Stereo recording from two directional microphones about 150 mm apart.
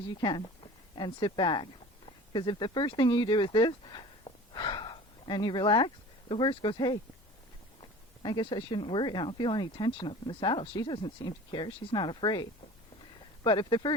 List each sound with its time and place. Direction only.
0.1 s speech: 30° left (ahead or behind)